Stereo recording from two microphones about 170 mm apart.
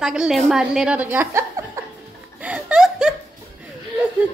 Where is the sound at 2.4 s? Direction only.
5° right (ahead or behind).